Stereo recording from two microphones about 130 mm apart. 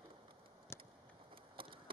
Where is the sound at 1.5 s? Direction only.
40° right (ahead or behind).